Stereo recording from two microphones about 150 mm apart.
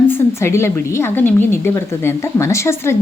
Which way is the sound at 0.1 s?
20° left (ahead or behind).